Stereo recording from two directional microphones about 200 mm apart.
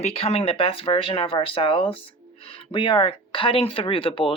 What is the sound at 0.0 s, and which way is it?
Speech, 30° left (ahead or behind).